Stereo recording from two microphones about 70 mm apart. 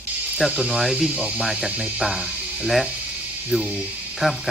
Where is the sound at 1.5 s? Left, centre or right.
Centre.